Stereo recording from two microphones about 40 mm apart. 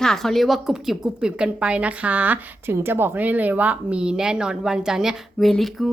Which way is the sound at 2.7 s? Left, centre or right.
Right.